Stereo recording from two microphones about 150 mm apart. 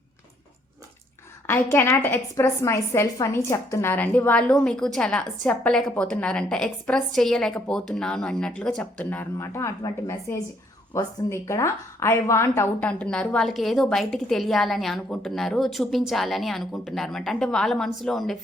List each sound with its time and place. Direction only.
1.5 s a woman's voice: 15° left (ahead or behind)